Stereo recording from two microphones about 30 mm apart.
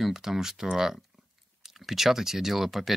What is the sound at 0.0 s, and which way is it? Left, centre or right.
Speech, centre.